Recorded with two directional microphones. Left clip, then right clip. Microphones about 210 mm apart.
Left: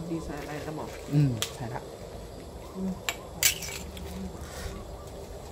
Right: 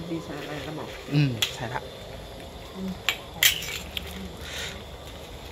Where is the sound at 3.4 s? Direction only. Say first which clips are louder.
Right 6 dB; 35° right (ahead or behind).